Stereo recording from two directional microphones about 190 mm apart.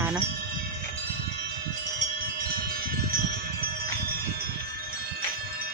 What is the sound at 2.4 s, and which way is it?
Wind chime, 50° right (ahead or behind).